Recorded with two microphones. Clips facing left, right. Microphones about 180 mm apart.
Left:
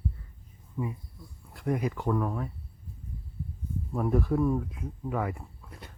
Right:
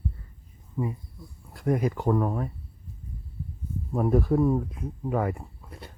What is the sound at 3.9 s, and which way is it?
Speech, 40° right (ahead or behind).